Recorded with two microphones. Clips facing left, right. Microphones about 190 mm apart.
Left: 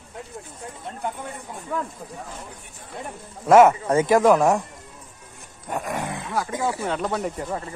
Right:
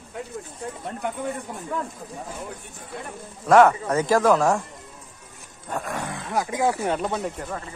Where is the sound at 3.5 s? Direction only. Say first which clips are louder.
Left 2 dB; 20° left (ahead or behind).